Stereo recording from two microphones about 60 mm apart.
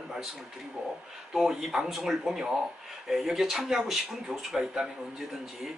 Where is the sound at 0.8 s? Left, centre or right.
Right.